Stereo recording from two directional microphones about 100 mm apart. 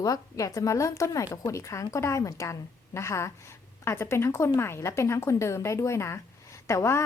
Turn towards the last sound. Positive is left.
turn(degrees=25)  # may be behind; listen again after turning